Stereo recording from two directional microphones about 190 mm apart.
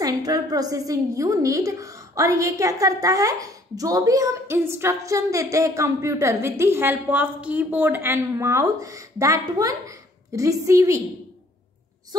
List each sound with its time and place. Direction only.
0.0 s a woman's voice: 20° right (ahead or behind)